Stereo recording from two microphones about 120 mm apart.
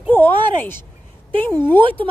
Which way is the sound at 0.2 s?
45° right (ahead or behind).